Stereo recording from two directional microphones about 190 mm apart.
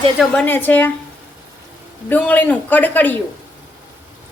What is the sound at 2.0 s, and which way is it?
A woman's voice, 10° left (ahead or behind).